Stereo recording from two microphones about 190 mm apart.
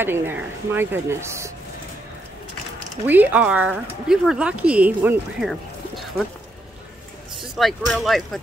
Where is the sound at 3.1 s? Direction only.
10° right (ahead or behind).